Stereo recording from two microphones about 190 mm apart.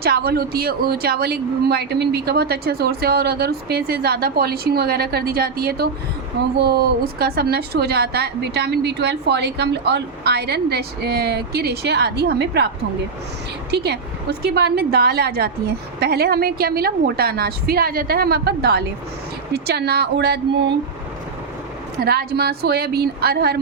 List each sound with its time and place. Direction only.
0.0 s a woman's voice: 55° right (ahead or behind)
22.0 s a woman's voice: 55° right (ahead or behind)